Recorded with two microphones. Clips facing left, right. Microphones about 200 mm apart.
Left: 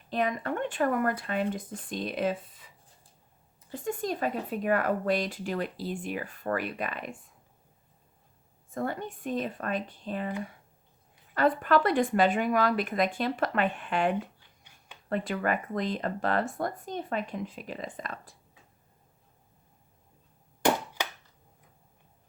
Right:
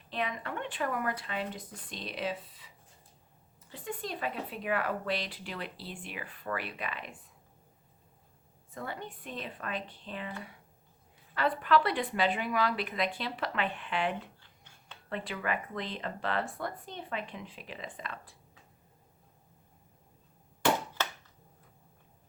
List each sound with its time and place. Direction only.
0.1 s speech: 45° left (ahead or behind)
3.7 s speech: 45° left (ahead or behind)
8.7 s speech: 45° left (ahead or behind)
11.3 s speech: 45° left (ahead or behind)
14.3 s a sound: 15° left (ahead or behind)
15.1 s speech: 45° left (ahead or behind)
20.7 s a sound: 15° left (ahead or behind)